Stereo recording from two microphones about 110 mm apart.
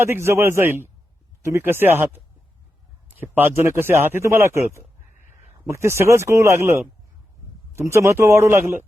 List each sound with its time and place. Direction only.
0.0 s speech: 25° right (ahead or behind)